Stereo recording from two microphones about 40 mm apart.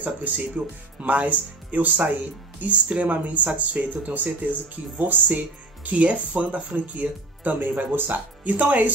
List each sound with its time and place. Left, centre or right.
0.0 s speech: right